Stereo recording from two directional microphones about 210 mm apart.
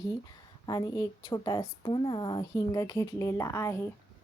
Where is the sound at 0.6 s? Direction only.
20° left (ahead or behind).